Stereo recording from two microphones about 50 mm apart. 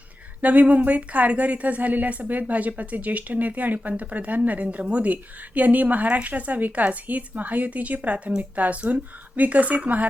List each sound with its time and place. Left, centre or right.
0.4 s speech: right